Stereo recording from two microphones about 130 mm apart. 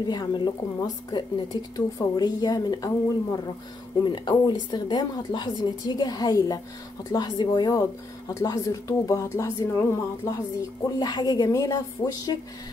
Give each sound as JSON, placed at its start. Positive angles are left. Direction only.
{"t": 0.1, "sound": "a woman's voice", "side_deg": 35}